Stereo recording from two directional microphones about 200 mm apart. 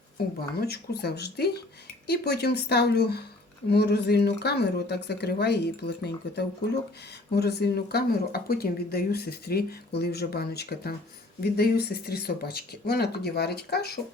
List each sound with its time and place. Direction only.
0.2 s speech: 50° left (ahead or behind)
7.3 s speech: 55° left (ahead or behind)